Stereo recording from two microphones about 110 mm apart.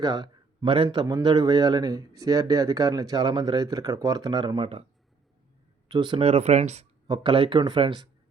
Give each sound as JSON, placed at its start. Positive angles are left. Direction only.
{"t": 0.0, "sound": "a man's voice", "side_deg": -40}
{"t": 5.9, "sound": "speech", "side_deg": -45}
{"t": 6.1, "sound": "speech", "side_deg": -65}
{"t": 7.1, "sound": "speech", "side_deg": -45}